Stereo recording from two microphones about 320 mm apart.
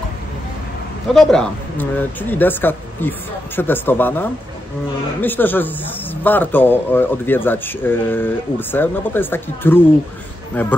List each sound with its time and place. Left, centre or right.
1.1 s speech: centre